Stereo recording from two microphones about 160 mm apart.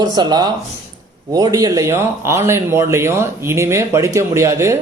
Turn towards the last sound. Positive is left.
turn(degrees=-20)  # may be behind; listen again after turning